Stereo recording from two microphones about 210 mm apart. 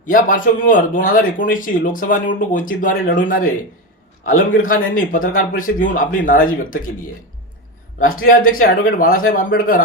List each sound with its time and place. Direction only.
0.0 s speech: 40° left (ahead or behind)
7.9 s speech: 40° left (ahead or behind)